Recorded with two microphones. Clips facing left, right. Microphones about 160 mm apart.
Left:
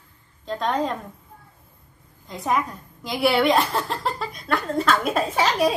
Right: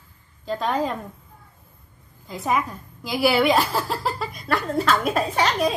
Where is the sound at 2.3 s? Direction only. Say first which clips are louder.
Even; centre (ahead or behind).